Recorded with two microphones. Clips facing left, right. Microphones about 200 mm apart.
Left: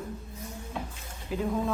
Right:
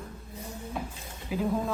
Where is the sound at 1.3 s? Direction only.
5° right (ahead or behind).